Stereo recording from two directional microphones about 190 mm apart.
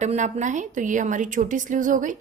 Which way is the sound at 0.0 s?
40° right (ahead or behind).